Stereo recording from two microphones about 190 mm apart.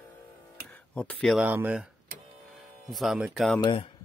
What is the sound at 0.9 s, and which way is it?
Speech, 5° left (ahead or behind).